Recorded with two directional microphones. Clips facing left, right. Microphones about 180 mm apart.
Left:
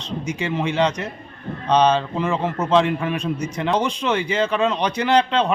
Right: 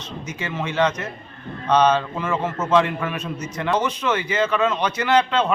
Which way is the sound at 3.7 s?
5° right (ahead or behind).